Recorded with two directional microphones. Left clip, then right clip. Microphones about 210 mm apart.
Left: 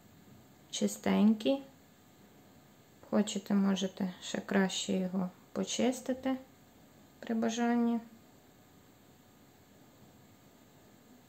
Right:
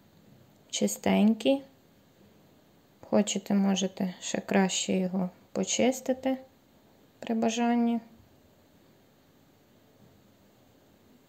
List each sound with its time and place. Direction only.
0.7 s speech: 25° right (ahead or behind)
3.1 s speech: 25° right (ahead or behind)